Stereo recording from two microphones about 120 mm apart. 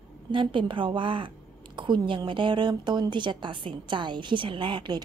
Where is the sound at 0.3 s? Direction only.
45° right (ahead or behind).